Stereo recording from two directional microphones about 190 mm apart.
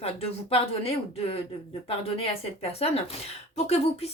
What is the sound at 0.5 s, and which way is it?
Speech, 30° left (ahead or behind).